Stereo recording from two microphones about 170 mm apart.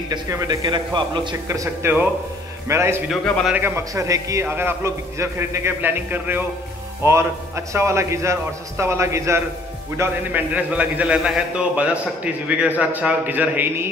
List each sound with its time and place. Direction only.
0.1 s a man's voice: 20° right (ahead or behind)